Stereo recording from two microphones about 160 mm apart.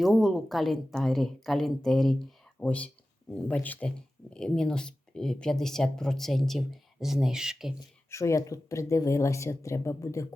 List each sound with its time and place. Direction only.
0.0 s speech: centre (ahead or behind)
8.1 s speech: 20° left (ahead or behind)